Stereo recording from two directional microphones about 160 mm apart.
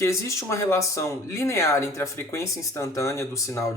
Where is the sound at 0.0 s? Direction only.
20° left (ahead or behind).